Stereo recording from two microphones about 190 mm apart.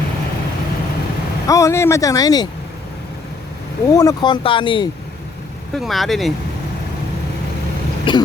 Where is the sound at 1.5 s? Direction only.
15° left (ahead or behind).